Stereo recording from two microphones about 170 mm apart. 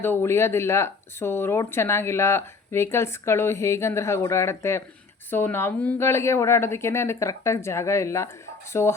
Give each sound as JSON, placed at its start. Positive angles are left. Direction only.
{"t": 0.0, "sound": "speech", "side_deg": 15}